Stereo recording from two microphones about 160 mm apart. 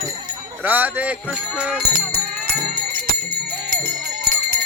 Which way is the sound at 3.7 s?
70° right (ahead or behind).